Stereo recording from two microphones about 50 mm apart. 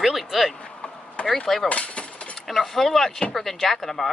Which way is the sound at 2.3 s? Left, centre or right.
Centre.